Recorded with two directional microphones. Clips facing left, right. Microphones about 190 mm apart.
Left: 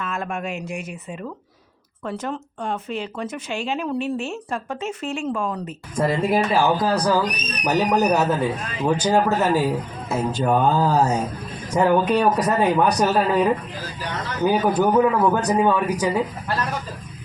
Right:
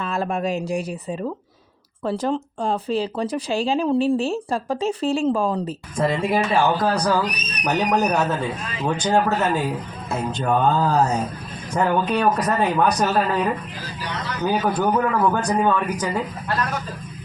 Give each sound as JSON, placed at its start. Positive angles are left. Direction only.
{"t": 0.0, "sound": "speech", "side_deg": -35}
{"t": 6.0, "sound": "a man's voice", "side_deg": 0}